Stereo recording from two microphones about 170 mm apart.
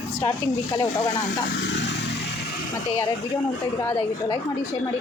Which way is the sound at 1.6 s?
90° left.